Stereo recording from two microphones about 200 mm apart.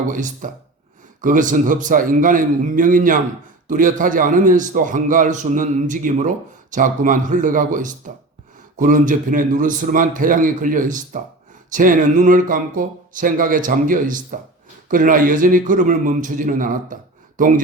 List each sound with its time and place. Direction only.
0.1 s a man's voice: 40° right (ahead or behind)